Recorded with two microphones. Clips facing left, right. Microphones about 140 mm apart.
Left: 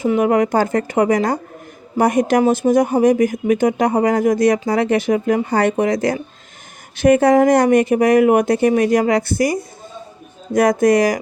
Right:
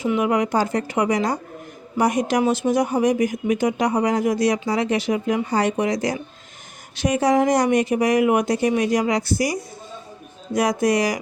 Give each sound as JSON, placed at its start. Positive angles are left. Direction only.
{"t": 0.0, "sound": "speech", "side_deg": 45}